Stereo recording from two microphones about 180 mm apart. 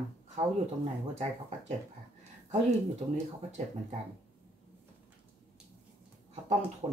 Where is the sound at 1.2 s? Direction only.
40° right (ahead or behind).